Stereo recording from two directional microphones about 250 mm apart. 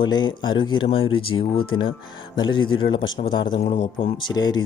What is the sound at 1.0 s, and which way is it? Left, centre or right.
Speech, left.